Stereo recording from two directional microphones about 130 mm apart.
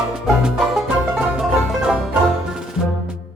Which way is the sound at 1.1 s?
5° right (ahead or behind).